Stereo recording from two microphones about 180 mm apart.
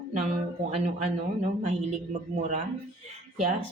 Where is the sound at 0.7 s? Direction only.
35° right (ahead or behind).